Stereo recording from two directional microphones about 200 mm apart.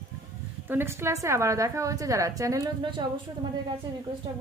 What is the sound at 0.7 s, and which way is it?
A woman's voice, 10° right (ahead or behind).